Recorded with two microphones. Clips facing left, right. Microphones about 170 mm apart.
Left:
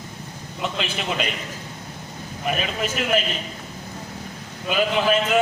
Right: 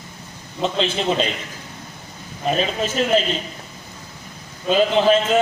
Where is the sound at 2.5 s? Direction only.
30° right (ahead or behind).